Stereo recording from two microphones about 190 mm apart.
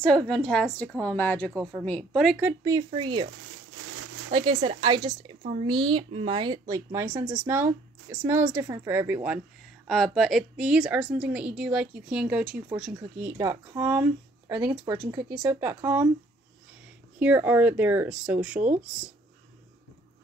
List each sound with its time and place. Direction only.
0.0 s a woman's voice: 5° left (ahead or behind)
2.3 s a woman's voice: 15° right (ahead or behind)
4.3 s a woman's voice: 25° right (ahead or behind)
5.4 s speech: 35° right (ahead or behind)
5.7 s a woman's voice: 25° right (ahead or behind); by 12.6 s 5° right (ahead or behind)
13.4 s a woman's voice: 15° right (ahead or behind)
17.2 s speech: 10° right (ahead or behind)